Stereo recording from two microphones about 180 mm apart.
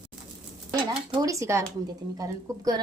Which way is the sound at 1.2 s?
15° right (ahead or behind).